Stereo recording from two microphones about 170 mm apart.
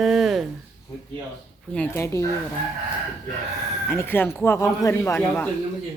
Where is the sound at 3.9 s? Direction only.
15° left (ahead or behind).